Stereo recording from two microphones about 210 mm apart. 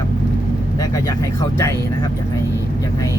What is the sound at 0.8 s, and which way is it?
Speech, 15° left (ahead or behind).